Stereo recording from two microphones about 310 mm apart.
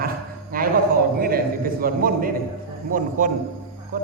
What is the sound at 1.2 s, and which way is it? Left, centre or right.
Mantra, right.